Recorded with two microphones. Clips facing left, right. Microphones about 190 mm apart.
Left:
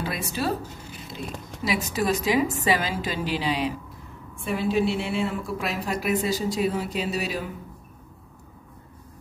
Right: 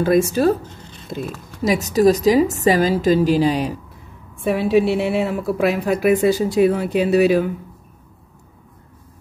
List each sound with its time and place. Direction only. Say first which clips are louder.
0.0 s a woman's voice: right 13 dB; 45° right (ahead or behind)
4.5 s a woman's voice: right 7 dB; 65° right (ahead or behind)